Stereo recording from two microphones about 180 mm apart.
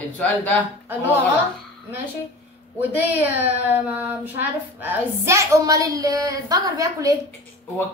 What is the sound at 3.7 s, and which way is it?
A woman's voice, 10° right (ahead or behind).